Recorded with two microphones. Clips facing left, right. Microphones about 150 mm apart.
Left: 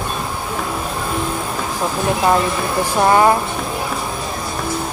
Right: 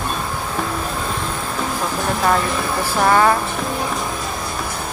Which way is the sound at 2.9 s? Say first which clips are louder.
Left 2 dB; 20° left (ahead or behind).